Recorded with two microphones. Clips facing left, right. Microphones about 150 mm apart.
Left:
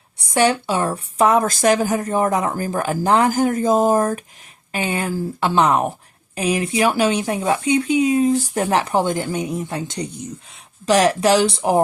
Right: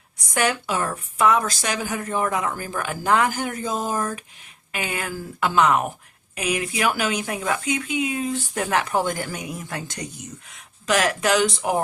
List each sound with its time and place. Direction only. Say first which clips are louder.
0.3 s a woman's voice: left 6 dB; 30° left (ahead or behind)
4.7 s a woman's voice: left 6 dB; 30° left (ahead or behind)